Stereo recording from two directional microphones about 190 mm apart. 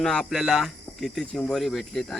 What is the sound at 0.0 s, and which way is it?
Speech, 5° left (ahead or behind).